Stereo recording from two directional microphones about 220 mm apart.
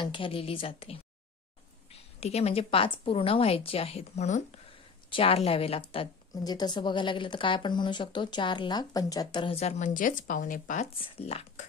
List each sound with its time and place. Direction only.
0.0 s speech: 25° left (ahead or behind)